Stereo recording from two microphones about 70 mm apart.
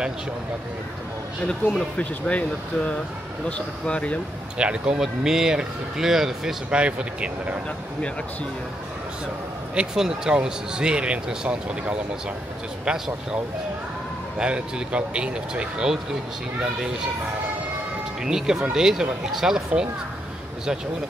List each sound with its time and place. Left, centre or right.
1.5 s speech: centre
4.6 s speech: centre
9.8 s speech: centre
14.4 s speech: centre
18.2 s speech: centre